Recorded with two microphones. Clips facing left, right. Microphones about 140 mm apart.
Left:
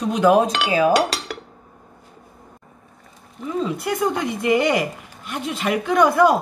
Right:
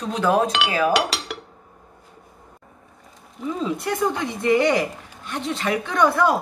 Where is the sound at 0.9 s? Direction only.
45° left (ahead or behind).